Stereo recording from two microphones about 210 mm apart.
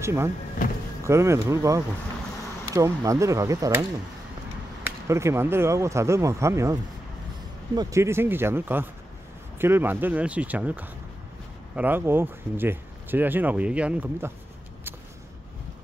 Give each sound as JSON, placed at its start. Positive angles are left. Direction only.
{"t": 0.0, "sound": "speech", "side_deg": -10}
{"t": 4.8, "sound": "speech", "side_deg": -15}